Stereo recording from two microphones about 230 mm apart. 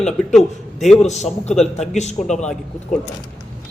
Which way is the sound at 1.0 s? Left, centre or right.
Left.